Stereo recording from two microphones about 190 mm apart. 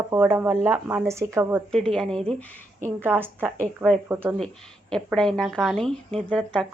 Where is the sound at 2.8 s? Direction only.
10° right (ahead or behind).